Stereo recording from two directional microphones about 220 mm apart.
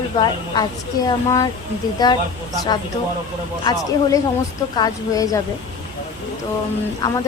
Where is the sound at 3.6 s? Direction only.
15° left (ahead or behind).